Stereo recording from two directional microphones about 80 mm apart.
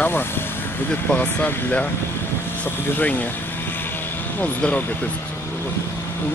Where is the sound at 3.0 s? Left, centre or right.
Left.